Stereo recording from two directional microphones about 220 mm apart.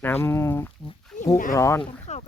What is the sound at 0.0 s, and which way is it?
Speech, 10° left (ahead or behind).